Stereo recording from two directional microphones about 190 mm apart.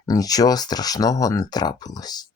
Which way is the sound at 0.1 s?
20° left (ahead or behind).